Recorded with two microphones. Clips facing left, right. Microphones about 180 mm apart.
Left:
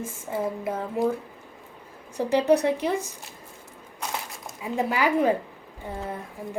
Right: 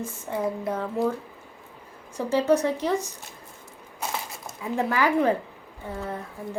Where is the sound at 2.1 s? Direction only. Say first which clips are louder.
Left 1 dB; 15° left (ahead or behind).